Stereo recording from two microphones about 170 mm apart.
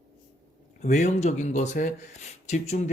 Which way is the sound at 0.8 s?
45° left (ahead or behind).